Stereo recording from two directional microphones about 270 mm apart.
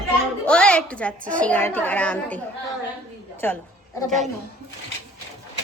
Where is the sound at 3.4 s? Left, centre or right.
Centre.